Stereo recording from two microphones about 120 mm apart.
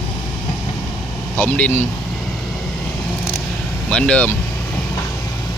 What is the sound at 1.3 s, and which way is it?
Speech, 10° left (ahead or behind).